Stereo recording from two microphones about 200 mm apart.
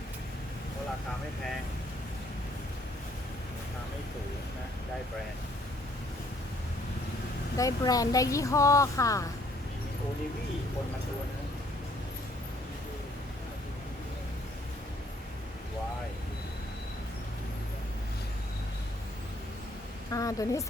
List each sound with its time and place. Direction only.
7.5 s speech: 15° left (ahead or behind)
20.1 s speech: 15° left (ahead or behind)